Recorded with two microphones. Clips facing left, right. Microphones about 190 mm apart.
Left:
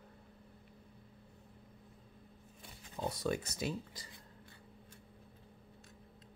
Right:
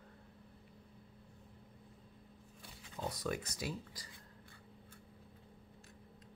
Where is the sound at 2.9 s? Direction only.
25° left (ahead or behind).